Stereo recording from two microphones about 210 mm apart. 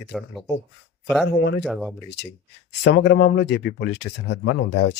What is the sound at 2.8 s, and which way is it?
Speech, 55° left (ahead or behind).